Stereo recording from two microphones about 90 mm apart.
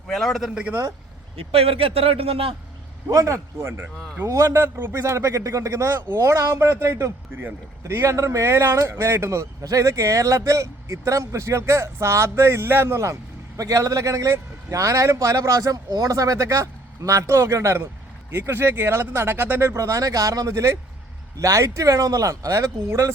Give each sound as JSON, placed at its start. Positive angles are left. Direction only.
{"t": 0.1, "sound": "a man's voice", "side_deg": 5}
{"t": 1.4, "sound": "a man's voice", "side_deg": -90}
{"t": 3.1, "sound": "speech", "side_deg": -40}